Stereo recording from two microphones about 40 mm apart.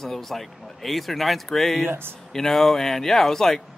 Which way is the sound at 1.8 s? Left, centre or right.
Right.